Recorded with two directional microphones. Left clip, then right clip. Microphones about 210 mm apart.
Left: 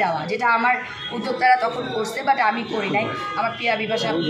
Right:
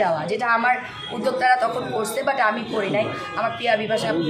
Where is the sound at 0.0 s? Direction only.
15° right (ahead or behind).